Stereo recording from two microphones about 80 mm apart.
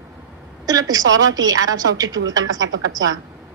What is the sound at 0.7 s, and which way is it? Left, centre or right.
A woman's voice, right.